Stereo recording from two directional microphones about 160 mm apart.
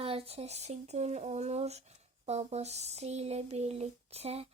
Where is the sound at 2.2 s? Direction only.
40° right (ahead or behind).